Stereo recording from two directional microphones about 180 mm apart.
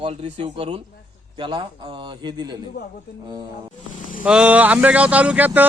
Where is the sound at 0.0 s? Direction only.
35° right (ahead or behind).